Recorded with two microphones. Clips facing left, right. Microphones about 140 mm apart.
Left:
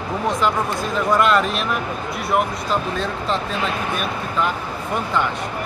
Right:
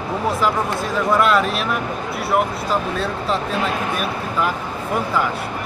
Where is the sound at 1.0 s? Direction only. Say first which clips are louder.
Even; centre (ahead or behind).